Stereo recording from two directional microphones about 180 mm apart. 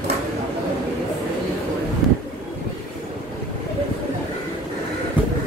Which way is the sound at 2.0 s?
Centre (ahead or behind).